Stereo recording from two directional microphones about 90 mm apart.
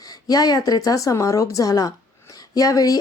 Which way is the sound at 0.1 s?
45° left (ahead or behind).